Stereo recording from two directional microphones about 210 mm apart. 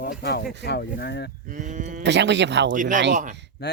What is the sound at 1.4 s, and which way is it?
Speech, 40° right (ahead or behind).